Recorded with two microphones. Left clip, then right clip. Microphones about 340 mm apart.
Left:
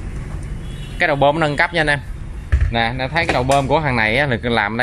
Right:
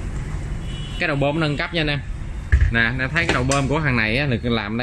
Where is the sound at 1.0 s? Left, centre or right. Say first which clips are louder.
Left 6 dB; centre.